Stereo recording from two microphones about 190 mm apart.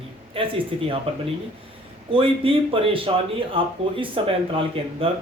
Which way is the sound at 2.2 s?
30° right (ahead or behind).